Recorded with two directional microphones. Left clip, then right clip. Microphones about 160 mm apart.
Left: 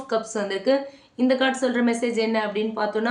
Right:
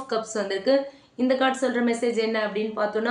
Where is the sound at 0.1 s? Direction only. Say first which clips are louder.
Left 2 dB; 20° left (ahead or behind).